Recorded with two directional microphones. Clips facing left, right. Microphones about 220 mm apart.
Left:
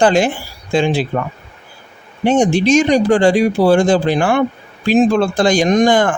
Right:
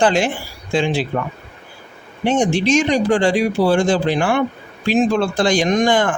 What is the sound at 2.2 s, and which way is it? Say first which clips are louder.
Speech: left 4 dB; 40° left (ahead or behind).